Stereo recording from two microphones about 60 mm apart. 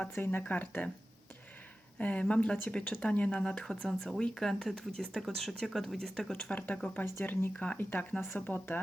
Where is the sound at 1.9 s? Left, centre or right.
Left; by 6.5 s centre.